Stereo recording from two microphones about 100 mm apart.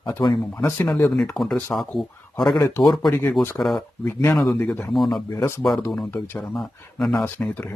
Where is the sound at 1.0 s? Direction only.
5° left (ahead or behind).